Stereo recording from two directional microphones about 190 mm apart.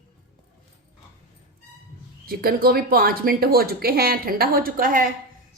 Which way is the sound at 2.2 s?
50° right (ahead or behind).